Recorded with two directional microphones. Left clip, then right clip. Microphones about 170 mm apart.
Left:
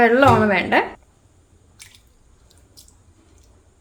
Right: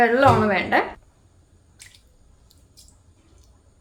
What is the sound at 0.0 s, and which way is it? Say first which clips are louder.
Speech: left 3 dB; 25° left (ahead or behind).